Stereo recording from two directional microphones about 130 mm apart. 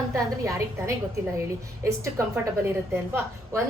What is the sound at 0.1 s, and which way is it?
Speech, 25° right (ahead or behind).